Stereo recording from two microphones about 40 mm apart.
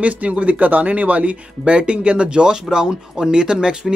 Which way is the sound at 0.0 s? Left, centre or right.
Right.